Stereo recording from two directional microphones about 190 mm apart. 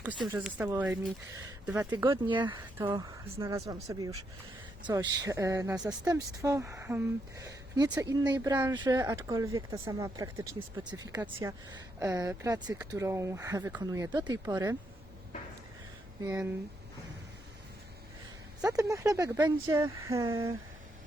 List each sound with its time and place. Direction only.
0.0 s speech: 10° right (ahead or behind)
18.7 s speech: 15° right (ahead or behind)